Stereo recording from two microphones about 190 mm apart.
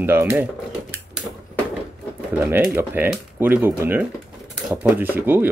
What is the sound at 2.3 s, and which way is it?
Speech, 10° right (ahead or behind).